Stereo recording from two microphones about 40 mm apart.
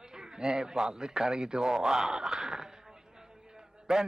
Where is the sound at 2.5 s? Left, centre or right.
Centre.